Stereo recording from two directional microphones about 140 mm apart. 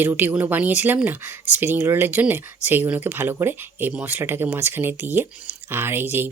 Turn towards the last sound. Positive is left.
turn(degrees=-15)  # may be behind; listen again after turning